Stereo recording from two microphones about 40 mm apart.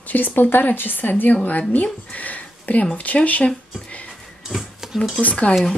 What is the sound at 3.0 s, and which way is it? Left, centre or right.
Speech, left.